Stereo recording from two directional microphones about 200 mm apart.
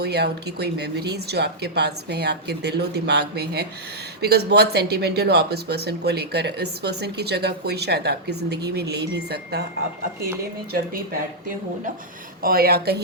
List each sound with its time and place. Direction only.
0.0 s speech: 55° right (ahead or behind)
12.4 s a woman's voice: 45° right (ahead or behind)